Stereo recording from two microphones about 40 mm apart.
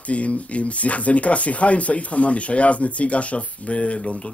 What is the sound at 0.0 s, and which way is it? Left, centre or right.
Speech, left.